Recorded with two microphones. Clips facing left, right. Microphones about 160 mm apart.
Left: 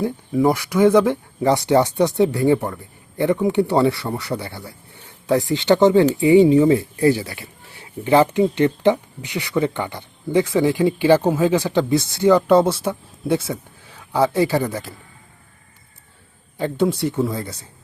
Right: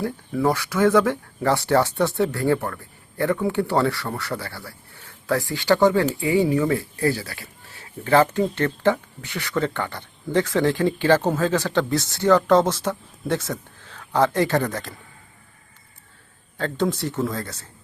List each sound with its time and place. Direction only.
0.0 s speech: 15° left (ahead or behind)
16.6 s speech: 10° left (ahead or behind)